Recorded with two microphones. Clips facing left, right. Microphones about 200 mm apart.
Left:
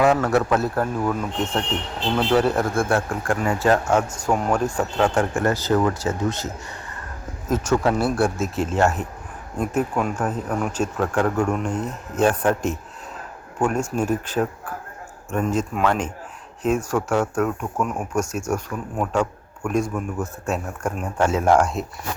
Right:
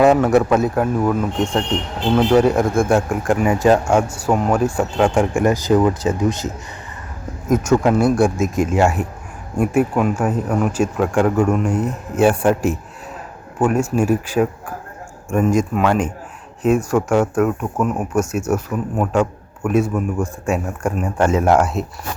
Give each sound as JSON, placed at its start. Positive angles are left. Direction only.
{"t": 0.0, "sound": "speech", "side_deg": -15}
{"t": 7.5, "sound": "speech", "side_deg": -10}